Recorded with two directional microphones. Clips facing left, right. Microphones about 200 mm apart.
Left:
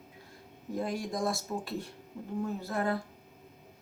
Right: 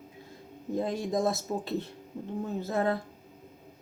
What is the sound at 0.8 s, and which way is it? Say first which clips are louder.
Speech: right 4 dB; 20° right (ahead or behind).